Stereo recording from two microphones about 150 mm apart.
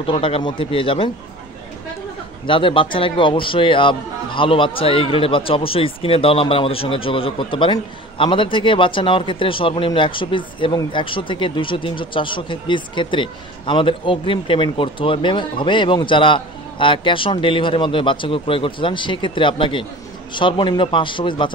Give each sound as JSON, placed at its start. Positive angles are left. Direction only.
{"t": 0.0, "sound": "speech", "side_deg": 35}
{"t": 2.4, "sound": "speech", "side_deg": 35}